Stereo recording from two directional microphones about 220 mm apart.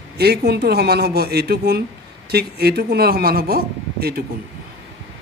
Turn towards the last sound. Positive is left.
turn(degrees=-45)  # may be behind; listen again after turning